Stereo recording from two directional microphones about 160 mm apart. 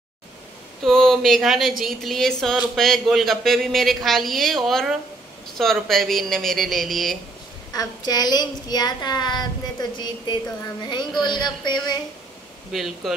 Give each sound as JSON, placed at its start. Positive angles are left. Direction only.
{"t": 0.8, "sound": "speech", "side_deg": 0}
{"t": 7.7, "sound": "a child's voice", "side_deg": 25}
{"t": 12.7, "sound": "speech", "side_deg": 0}